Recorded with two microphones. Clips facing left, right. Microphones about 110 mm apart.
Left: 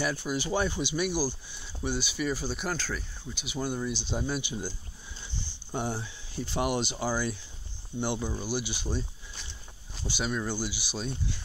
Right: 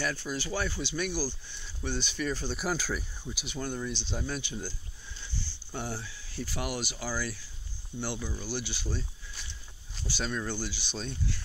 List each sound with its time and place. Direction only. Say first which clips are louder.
0.0 s speech: left 3 dB; 15° left (ahead or behind)
2.6 s speech: right 1 dB; 5° right (ahead or behind)
3.4 s speech: left 3 dB; 10° left (ahead or behind)
10.0 s speech: left 2 dB; 15° left (ahead or behind)